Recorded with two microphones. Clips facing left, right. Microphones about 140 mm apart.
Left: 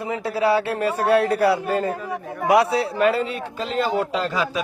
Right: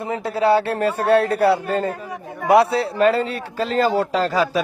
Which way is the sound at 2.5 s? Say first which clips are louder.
Right 3 dB; 30° right (ahead or behind).